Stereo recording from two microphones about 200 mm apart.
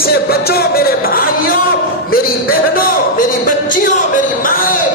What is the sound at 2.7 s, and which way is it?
Music, 45° left (ahead or behind).